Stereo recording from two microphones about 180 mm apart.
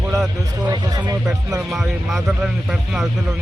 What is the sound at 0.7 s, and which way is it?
Speech, 20° right (ahead or behind).